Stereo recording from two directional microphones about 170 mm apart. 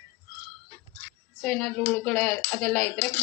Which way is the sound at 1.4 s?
5° left (ahead or behind).